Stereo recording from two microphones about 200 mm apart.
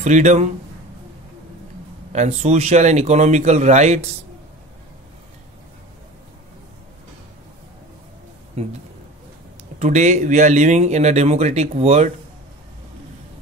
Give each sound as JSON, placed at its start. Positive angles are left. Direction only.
{"t": 0.0, "sound": "speech", "side_deg": -35}
{"t": 2.1, "sound": "speech", "side_deg": -35}
{"t": 8.6, "sound": "speech", "side_deg": -35}
{"t": 9.8, "sound": "speech", "side_deg": -35}